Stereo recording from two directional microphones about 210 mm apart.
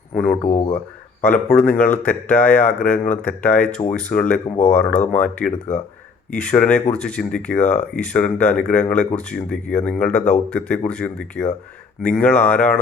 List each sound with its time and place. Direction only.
0.4 s speech: 35° left (ahead or behind)
1.2 s speech: 5° left (ahead or behind)
4.4 s speech: 35° left (ahead or behind)
4.8 s speech: 5° left (ahead or behind)
5.5 s speech: 35° left (ahead or behind)
6.3 s speech: 5° left (ahead or behind)